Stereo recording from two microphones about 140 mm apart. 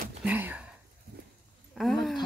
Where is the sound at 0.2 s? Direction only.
15° right (ahead or behind).